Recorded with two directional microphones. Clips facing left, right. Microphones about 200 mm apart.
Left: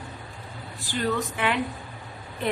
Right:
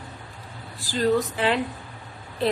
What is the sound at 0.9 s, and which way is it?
Speech, 30° right (ahead or behind).